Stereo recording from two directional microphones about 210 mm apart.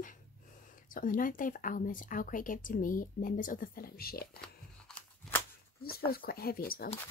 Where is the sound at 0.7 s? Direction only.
40° left (ahead or behind).